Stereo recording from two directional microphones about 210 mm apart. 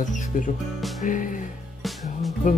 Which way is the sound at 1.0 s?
40° left (ahead or behind).